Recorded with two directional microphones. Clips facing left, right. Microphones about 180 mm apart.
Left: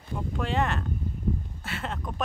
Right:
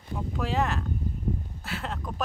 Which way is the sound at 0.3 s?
Centre (ahead or behind).